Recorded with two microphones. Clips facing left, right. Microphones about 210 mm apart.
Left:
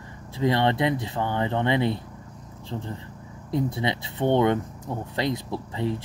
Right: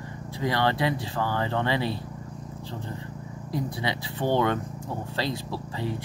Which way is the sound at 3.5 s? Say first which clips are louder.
Left 4 dB; 25° left (ahead or behind).